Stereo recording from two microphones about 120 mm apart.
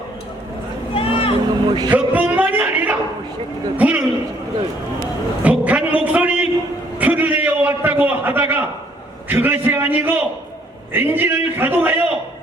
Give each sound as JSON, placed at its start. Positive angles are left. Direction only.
{"t": 0.9, "sound": "vehicle", "side_deg": 50}
{"t": 1.6, "sound": "music", "side_deg": -40}
{"t": 1.9, "sound": "a sound", "side_deg": -10}
{"t": 3.8, "sound": "a man's voice", "side_deg": -15}
{"t": 5.4, "sound": "a sound", "side_deg": -10}
{"t": 10.9, "sound": "a man's voice", "side_deg": -15}